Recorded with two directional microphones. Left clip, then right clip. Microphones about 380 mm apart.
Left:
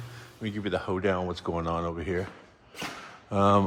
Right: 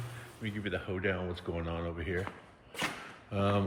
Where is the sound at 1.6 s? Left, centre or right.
Centre.